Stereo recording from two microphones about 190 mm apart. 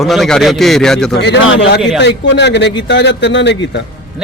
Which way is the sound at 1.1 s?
65° left (ahead or behind).